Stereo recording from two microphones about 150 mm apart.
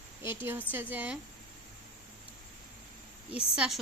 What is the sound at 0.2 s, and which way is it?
Speech, 15° right (ahead or behind).